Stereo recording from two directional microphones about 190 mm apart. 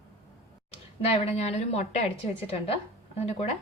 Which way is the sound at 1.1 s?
35° left (ahead or behind).